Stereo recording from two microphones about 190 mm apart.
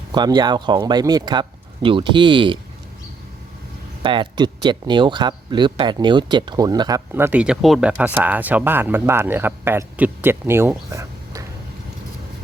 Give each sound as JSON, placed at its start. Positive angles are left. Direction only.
{"t": 0.1, "sound": "speech", "side_deg": -20}
{"t": 4.0, "sound": "speech", "side_deg": -25}